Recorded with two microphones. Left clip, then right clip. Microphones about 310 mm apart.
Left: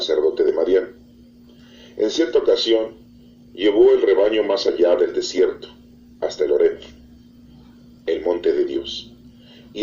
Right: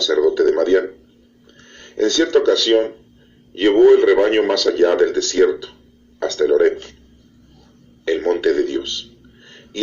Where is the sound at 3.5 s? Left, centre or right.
Right.